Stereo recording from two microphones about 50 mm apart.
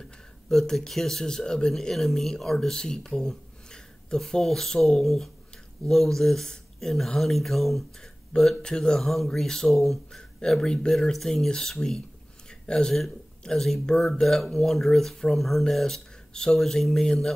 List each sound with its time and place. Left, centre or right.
0.5 s speech: centre
8.3 s speech: left
8.6 s speech: centre
10.5 s speech: centre
12.4 s a sound: centre
13.4 s speech: centre
14.2 s speech: centre